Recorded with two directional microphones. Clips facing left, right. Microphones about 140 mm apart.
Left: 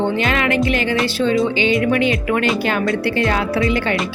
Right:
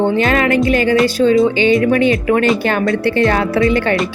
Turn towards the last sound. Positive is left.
turn(degrees=-50)  # may be behind; listen again after turning